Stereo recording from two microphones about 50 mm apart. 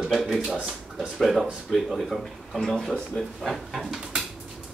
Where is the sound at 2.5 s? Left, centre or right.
Centre.